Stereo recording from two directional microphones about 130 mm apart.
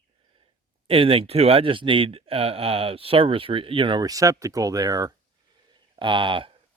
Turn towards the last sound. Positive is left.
turn(degrees=-40)  # may be behind; listen again after turning